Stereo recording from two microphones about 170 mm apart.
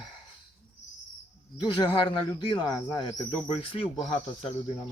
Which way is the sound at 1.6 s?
25° left (ahead or behind).